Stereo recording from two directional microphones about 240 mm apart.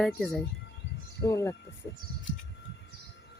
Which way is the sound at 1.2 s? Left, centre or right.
Centre.